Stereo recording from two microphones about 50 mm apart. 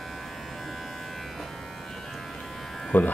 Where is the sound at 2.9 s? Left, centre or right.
Left.